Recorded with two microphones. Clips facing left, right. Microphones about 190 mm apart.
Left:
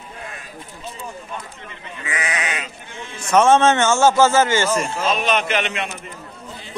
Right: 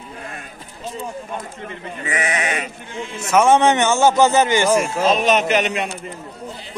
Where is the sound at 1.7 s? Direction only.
40° right (ahead or behind).